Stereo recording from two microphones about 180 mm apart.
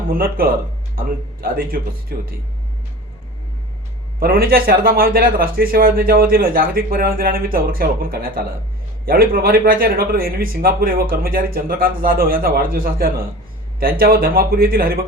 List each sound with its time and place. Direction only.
0.1 s speech: 55° right (ahead or behind)
4.2 s speech: 55° right (ahead or behind)